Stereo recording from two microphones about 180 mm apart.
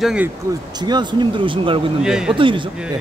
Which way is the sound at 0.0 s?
5° right (ahead or behind).